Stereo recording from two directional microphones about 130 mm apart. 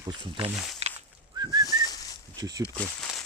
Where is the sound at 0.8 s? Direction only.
55° right (ahead or behind).